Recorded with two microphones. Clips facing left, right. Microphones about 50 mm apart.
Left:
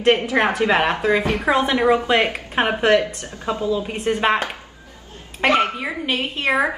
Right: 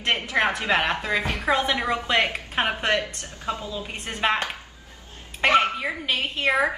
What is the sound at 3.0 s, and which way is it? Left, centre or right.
Speech, left.